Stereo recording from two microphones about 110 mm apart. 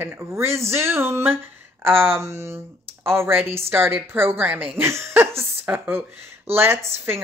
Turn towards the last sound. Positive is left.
turn(degrees=-25)  # may be behind; listen again after turning